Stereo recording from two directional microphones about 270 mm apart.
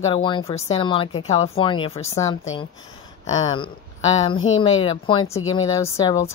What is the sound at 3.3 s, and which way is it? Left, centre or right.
Speech, left.